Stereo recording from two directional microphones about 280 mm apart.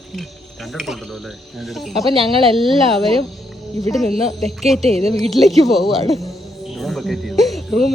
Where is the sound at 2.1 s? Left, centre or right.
Centre.